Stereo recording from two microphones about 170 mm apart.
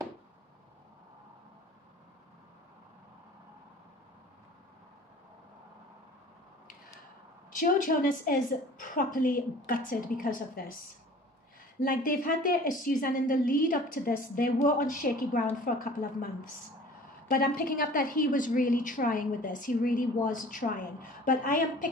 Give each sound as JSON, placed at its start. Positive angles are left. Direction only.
{"t": 7.5, "sound": "a woman's voice", "side_deg": 55}
{"t": 11.8, "sound": "a woman's voice", "side_deg": 55}
{"t": 17.6, "sound": "a woman's voice", "side_deg": 55}